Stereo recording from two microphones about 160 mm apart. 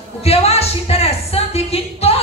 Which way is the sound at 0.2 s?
40° left (ahead or behind).